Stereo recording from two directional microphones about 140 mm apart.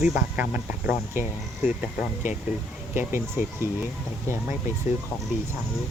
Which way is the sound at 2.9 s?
15° right (ahead or behind).